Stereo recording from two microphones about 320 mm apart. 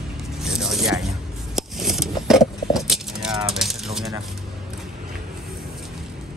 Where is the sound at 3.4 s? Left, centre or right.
Centre.